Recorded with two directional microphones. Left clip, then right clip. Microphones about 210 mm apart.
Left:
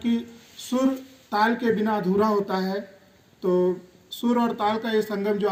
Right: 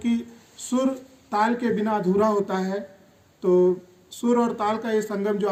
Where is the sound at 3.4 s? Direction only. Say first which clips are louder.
Right 3 dB; centre (ahead or behind).